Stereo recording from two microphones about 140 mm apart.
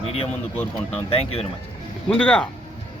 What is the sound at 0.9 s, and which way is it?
Speech, 50° left (ahead or behind).